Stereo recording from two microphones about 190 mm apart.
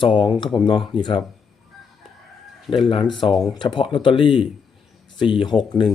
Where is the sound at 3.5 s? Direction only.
25° left (ahead or behind).